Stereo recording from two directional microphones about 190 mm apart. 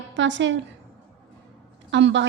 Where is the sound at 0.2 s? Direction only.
70° right (ahead or behind).